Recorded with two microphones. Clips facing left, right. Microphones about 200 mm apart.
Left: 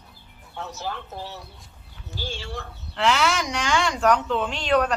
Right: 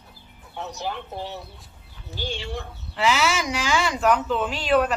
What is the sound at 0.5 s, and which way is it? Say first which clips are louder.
A woman's voice: right 2 dB; 15° right (ahead or behind).